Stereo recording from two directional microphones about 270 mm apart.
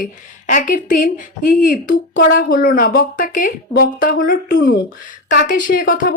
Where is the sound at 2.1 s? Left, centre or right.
Left.